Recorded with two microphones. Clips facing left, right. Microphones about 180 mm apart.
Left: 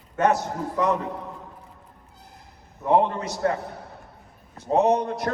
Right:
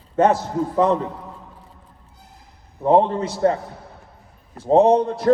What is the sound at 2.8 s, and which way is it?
Speech, 30° right (ahead or behind).